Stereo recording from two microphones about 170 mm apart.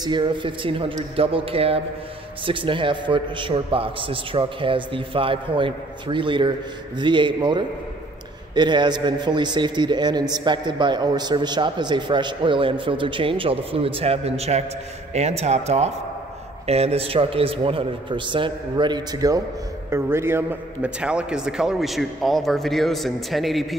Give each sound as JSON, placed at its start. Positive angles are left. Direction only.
{"t": 0.0, "sound": "a man's voice", "side_deg": -25}